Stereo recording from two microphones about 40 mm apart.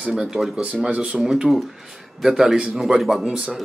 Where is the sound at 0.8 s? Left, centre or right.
Right.